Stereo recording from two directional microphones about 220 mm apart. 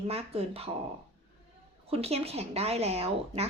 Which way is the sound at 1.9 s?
25° right (ahead or behind).